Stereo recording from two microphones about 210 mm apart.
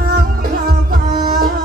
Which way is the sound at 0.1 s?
45° right (ahead or behind).